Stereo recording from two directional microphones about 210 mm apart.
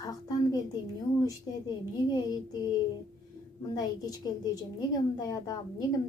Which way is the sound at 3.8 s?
20° left (ahead or behind).